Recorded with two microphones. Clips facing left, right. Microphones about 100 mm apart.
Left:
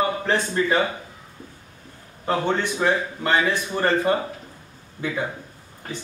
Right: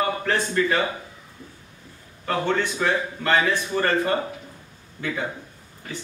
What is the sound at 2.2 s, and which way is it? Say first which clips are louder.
Speech: left 1 dB; 20° left (ahead or behind).